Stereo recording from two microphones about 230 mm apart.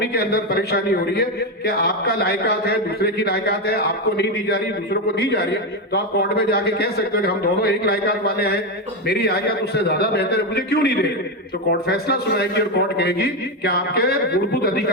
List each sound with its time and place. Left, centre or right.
0.0 s a man's voice: left